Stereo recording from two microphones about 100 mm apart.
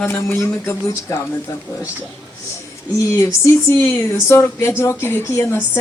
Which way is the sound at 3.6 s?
25° left (ahead or behind).